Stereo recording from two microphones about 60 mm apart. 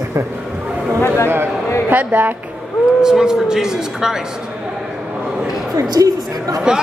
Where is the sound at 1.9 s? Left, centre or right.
Right.